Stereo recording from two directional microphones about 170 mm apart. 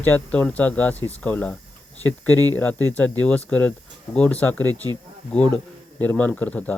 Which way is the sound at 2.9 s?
10° left (ahead or behind).